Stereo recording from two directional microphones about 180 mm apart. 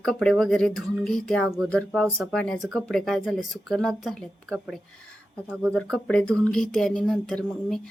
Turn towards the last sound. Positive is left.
turn(degrees=0)  # may be behind; listen again after turning